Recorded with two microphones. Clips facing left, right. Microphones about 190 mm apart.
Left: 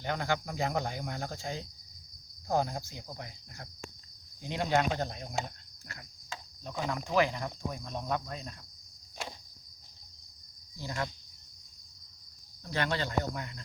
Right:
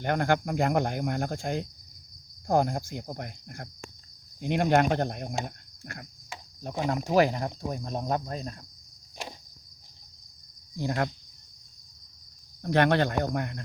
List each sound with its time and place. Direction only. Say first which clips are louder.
0.0 s speech: right 7 dB; 55° right (ahead or behind)
7.0 s speech: right 6 dB; 40° right (ahead or behind)
10.8 s speech: right 8 dB; 55° right (ahead or behind)
12.6 s speech: right 10 dB; 60° right (ahead or behind)